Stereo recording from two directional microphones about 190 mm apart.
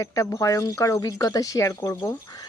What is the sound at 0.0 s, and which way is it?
Speech, 15° left (ahead or behind).